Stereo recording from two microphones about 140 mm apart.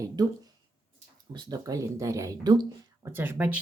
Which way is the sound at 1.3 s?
30° right (ahead or behind).